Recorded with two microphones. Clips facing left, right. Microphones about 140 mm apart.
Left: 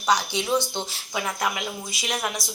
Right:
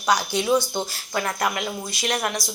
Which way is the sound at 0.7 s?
10° right (ahead or behind).